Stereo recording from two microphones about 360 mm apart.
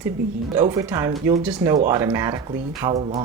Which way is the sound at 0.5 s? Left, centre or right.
Centre.